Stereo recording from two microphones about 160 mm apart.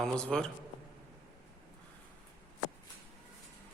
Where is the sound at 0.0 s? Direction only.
5° left (ahead or behind).